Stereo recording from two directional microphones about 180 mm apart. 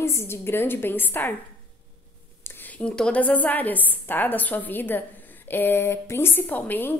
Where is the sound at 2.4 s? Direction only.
10° left (ahead or behind).